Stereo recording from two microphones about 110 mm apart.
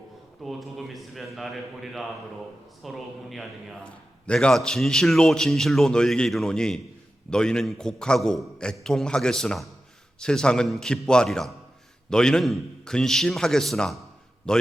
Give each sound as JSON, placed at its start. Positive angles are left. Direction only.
{"t": 0.4, "sound": "a man's voice", "side_deg": 0}